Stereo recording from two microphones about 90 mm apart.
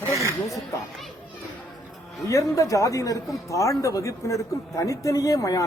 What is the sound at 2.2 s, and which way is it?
A man's voice, 40° left (ahead or behind).